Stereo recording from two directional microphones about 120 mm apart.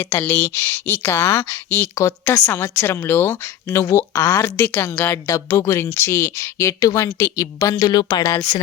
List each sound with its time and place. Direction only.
0.0 s speech: 15° left (ahead or behind)